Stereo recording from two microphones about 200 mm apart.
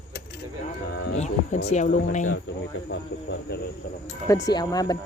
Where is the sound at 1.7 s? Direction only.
35° left (ahead or behind).